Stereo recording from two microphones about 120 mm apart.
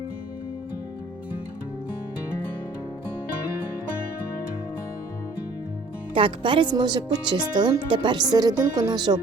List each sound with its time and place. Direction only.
6.1 s speech: 45° right (ahead or behind)